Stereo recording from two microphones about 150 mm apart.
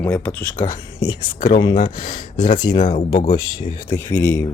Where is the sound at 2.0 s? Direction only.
65° left (ahead or behind).